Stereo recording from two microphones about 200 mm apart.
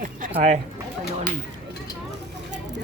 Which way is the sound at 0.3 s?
35° right (ahead or behind).